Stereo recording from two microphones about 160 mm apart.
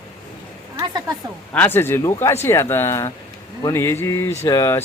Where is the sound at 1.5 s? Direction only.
10° left (ahead or behind).